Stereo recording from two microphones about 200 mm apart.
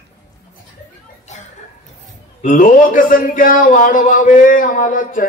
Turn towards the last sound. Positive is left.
turn(degrees=40)  # may be behind; listen again after turning